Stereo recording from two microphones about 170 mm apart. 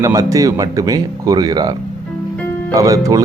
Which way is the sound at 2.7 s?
20° right (ahead or behind).